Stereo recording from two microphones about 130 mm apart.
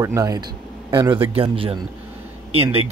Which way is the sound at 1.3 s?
45° right (ahead or behind).